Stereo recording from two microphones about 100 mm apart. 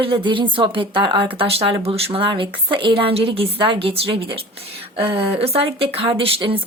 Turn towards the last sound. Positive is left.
turn(degrees=-60)  # may be behind; listen again after turning